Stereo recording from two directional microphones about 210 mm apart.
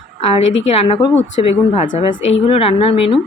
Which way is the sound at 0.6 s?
30° left (ahead or behind).